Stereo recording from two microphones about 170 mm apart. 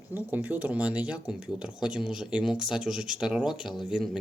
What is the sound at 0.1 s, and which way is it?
Speech, 10° right (ahead or behind).